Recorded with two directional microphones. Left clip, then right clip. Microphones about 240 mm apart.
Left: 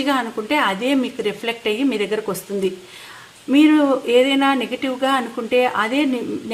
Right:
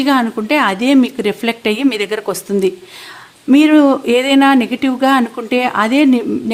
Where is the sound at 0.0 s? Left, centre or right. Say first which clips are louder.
Right 6 dB; right.